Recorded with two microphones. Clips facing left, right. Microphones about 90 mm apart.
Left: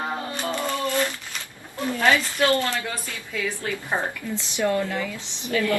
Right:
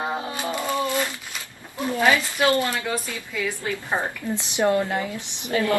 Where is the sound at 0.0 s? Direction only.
15° right (ahead or behind).